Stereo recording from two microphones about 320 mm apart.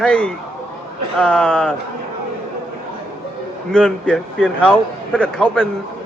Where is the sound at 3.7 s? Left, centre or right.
Centre.